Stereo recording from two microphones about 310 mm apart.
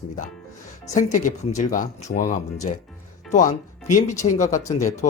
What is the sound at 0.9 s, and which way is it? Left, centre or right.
Speech, left.